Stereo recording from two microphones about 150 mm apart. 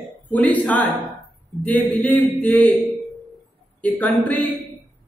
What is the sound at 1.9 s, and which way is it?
Speech, 10° left (ahead or behind).